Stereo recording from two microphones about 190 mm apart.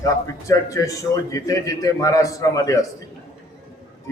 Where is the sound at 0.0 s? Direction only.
15° left (ahead or behind).